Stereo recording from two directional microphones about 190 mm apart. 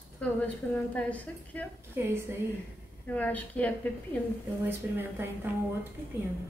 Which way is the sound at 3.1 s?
10° left (ahead or behind).